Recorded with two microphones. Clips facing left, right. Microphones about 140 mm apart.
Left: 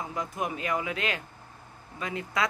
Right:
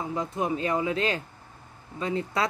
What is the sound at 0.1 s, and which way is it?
Speech, 30° right (ahead or behind).